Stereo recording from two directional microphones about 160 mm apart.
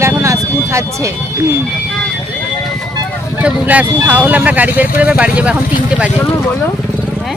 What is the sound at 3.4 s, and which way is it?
Speech, 5° right (ahead or behind).